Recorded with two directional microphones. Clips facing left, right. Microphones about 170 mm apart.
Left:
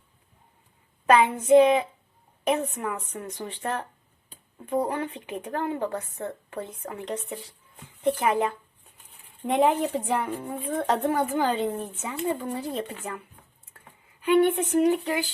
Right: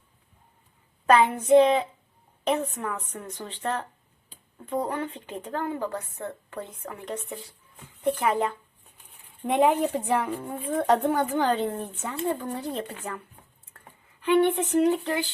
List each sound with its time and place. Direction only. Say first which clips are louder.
1.0 s speech: even; 10° left (ahead or behind)
9.5 s a woman's voice: even; centre (ahead or behind)
14.8 s speech: even; 10° left (ahead or behind)